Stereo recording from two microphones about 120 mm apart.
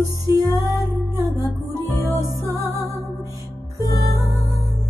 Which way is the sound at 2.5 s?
25° right (ahead or behind).